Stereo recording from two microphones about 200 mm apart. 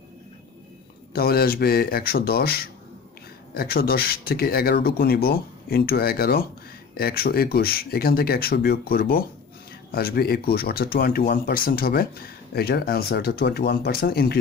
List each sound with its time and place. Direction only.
1.1 s speech: 50° left (ahead or behind)